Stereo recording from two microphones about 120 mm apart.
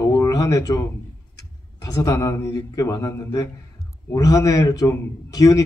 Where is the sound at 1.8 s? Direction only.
30° left (ahead or behind).